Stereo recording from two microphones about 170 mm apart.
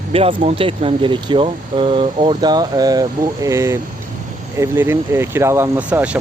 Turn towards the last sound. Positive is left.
turn(degrees=-10)  # may be behind; listen again after turning